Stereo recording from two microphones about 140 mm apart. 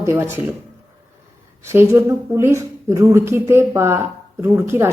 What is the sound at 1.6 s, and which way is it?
Speech, 15° right (ahead or behind).